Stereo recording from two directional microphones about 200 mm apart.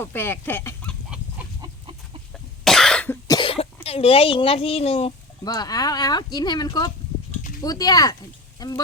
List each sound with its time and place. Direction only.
0.0 s speech: 10° left (ahead or behind)
2.3 s cough: centre (ahead or behind)
3.2 s cough: 25° left (ahead or behind)
3.8 s speech: 30° left (ahead or behind)
5.5 s speech: 20° left (ahead or behind)